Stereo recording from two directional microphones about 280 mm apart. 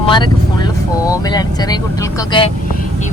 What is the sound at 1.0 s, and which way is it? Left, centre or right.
Speech, centre.